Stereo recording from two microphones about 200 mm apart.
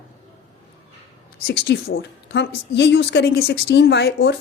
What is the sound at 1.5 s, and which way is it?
A woman's voice, 50° left (ahead or behind).